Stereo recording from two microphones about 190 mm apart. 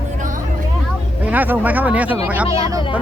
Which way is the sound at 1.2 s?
10° right (ahead or behind).